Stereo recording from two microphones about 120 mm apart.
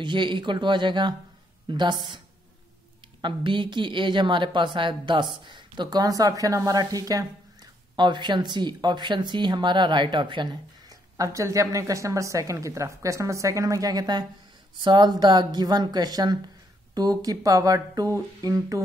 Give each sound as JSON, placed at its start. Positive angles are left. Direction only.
{"t": 0.0, "sound": "a woman's voice", "side_deg": -40}
{"t": 3.2, "sound": "a woman's voice", "side_deg": -40}